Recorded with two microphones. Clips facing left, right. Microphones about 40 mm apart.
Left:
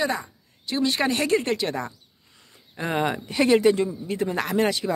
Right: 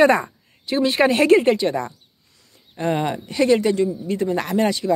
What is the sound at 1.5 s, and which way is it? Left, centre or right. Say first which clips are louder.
Speech: right 6 dB; centre.